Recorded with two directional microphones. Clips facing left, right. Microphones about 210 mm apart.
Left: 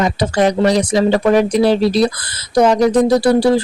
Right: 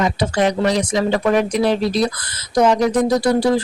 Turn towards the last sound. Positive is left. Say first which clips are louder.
# left 4 dB
turn(degrees=30)  # may be behind; listen again after turning